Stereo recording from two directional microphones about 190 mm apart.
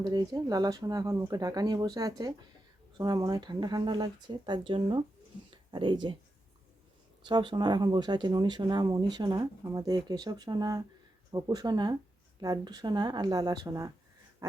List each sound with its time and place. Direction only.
0.0 s speech: 20° right (ahead or behind)
7.3 s speech: 25° right (ahead or behind)